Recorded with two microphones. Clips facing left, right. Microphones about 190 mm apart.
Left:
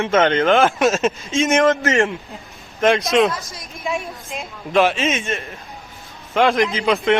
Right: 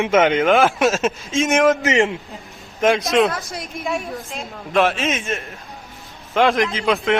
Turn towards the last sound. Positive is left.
turn(degrees=0)  # may be behind; listen again after turning